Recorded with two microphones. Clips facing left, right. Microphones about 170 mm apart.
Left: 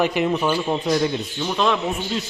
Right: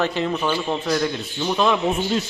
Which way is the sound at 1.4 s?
5° right (ahead or behind).